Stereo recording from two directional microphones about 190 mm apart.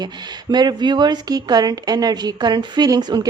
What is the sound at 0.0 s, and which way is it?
Speech, 20° right (ahead or behind).